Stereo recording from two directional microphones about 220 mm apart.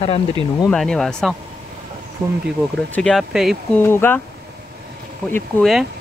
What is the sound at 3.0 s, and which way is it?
Speech, centre (ahead or behind).